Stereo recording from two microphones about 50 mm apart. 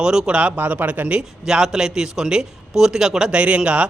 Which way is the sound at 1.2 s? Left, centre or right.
Centre.